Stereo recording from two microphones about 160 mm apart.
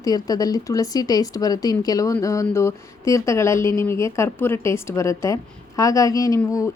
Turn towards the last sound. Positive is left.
turn(degrees=20)  # may be behind; listen again after turning